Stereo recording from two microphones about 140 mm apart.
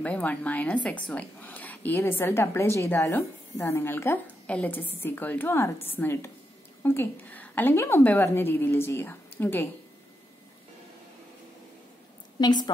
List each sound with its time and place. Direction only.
0.0 s a woman's voice: 10° left (ahead or behind)
12.4 s a woman's voice: 30° left (ahead or behind)